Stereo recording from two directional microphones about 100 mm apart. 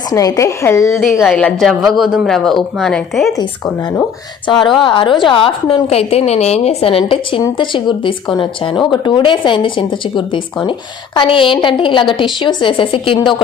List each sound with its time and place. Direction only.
0.1 s speech: 35° left (ahead or behind)
1.2 s speech: centre (ahead or behind)
4.8 s a woman's voice: 55° left (ahead or behind)